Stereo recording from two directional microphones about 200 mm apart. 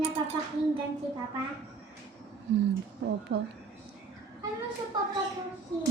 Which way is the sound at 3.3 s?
60° right (ahead or behind).